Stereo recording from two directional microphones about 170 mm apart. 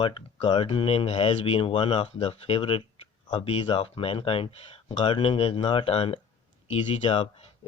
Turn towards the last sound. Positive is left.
turn(degrees=35)  # may be behind; listen again after turning